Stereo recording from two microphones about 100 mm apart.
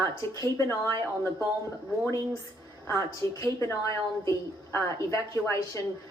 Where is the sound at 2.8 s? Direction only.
30° left (ahead or behind).